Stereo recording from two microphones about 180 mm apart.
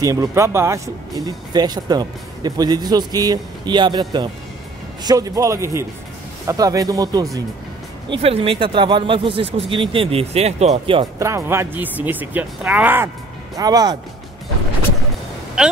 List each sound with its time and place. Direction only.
0.0 s speech: 20° right (ahead or behind)
8.1 s speech: 35° right (ahead or behind)
11.1 s speech: 15° right (ahead or behind)
13.6 s speech: 20° right (ahead or behind)
15.6 s a woman's voice: 5° right (ahead or behind)